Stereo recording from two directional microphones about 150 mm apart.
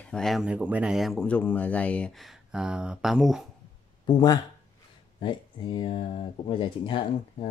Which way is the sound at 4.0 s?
30° left (ahead or behind).